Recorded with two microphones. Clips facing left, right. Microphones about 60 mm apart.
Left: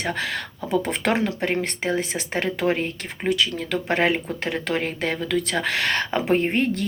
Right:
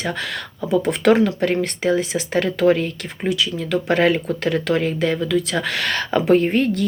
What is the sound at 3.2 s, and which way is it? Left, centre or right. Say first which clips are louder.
Speech: right 2 dB; left.